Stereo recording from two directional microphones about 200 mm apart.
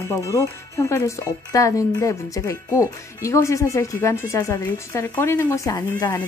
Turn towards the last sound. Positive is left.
turn(degrees=20)  # may be behind; listen again after turning